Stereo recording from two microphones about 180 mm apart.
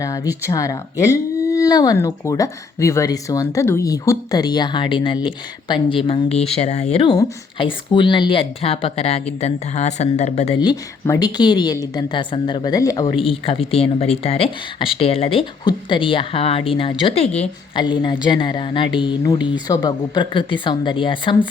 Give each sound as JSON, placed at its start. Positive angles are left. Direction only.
{"t": 0.0, "sound": "speech", "side_deg": 20}
{"t": 10.6, "sound": "speech", "side_deg": 20}
{"t": 17.8, "sound": "speech", "side_deg": 25}